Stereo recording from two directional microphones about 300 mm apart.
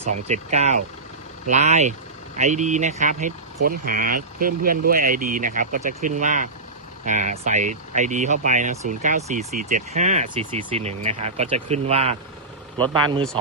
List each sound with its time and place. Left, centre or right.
0.3 s speech: right